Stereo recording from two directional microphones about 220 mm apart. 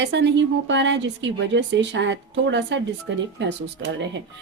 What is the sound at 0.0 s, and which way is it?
A woman's voice, 55° right (ahead or behind).